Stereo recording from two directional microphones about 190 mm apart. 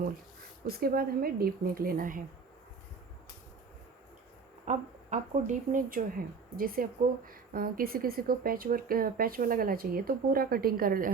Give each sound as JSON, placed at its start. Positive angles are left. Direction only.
{"t": 0.7, "sound": "speech", "side_deg": -50}
{"t": 4.6, "sound": "speech", "side_deg": -40}